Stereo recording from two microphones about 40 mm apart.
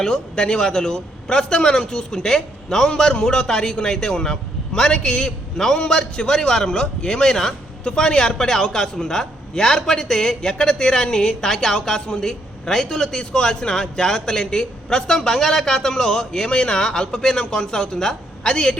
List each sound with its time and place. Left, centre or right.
0.0 s a man's voice: centre